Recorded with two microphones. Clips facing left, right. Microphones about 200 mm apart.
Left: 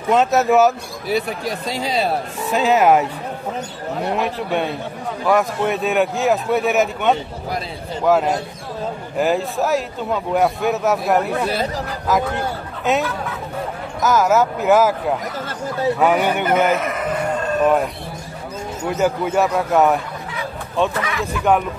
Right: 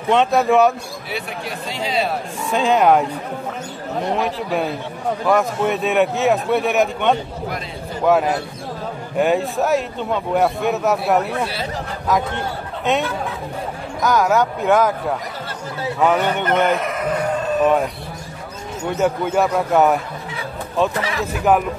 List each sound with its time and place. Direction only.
0.1 s a man's voice: 5° left (ahead or behind)
1.0 s speech: 40° left (ahead or behind)
2.5 s a man's voice: 5° left (ahead or behind)
4.1 s a man's voice: centre (ahead or behind)
12.9 s a man's voice: centre (ahead or behind)
14.0 s a man's voice: centre (ahead or behind)
18.9 s a man's voice: centre (ahead or behind)
21.0 s speech: 35° right (ahead or behind)